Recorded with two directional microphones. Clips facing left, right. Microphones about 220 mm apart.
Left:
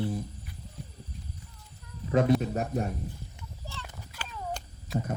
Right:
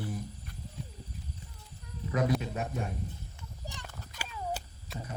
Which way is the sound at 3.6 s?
15° right (ahead or behind).